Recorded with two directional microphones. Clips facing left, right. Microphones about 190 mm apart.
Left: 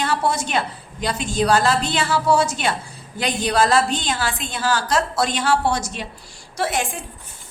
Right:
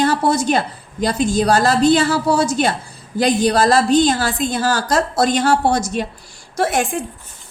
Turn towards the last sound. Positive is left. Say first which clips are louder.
# right 5 dB
turn(degrees=-50)  # may be behind; listen again after turning